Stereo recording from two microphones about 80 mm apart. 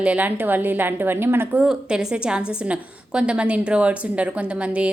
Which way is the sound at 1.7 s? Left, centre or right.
Centre.